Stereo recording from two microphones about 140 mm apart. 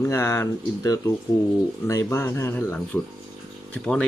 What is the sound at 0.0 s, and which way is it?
Speech, 20° left (ahead or behind).